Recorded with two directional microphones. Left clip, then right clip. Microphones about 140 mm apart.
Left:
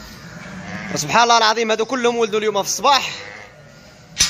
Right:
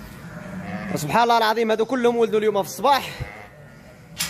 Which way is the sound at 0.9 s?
15° right (ahead or behind).